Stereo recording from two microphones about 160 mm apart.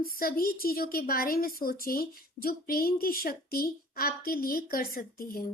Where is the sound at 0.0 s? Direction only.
65° left (ahead or behind).